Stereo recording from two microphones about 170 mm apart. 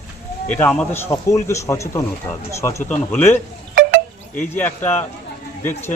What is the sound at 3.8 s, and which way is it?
Wind chime, 65° right (ahead or behind).